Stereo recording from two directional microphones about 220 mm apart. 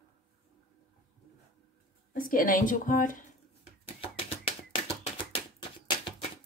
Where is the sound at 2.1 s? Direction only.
40° left (ahead or behind).